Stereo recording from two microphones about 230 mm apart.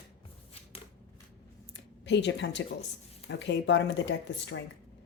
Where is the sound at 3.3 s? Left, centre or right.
Left.